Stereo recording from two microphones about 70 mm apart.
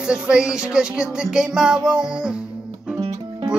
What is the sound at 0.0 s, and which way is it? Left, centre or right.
Music, centre.